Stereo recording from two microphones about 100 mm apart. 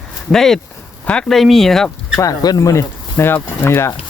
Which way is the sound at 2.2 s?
40° left (ahead or behind).